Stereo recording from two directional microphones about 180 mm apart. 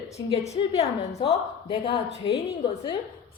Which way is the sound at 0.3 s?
35° left (ahead or behind).